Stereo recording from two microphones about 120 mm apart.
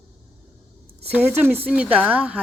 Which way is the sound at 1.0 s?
15° right (ahead or behind).